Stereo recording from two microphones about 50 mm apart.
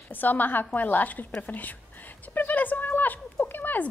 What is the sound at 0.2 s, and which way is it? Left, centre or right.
Speech, left.